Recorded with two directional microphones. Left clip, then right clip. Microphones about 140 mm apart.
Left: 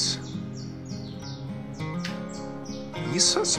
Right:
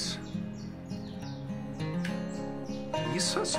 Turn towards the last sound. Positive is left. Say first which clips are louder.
# left 7 dB
turn(degrees=20)  # may be behind; listen again after turning